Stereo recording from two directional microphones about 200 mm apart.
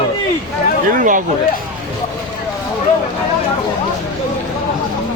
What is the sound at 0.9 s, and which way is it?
Speech, 40° right (ahead or behind).